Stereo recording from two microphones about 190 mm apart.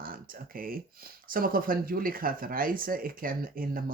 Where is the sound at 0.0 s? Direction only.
50° right (ahead or behind).